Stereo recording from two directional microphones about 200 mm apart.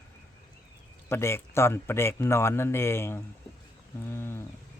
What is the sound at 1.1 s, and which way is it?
Speech, 10° left (ahead or behind).